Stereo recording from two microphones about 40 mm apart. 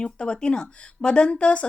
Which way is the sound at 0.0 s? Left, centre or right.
Left.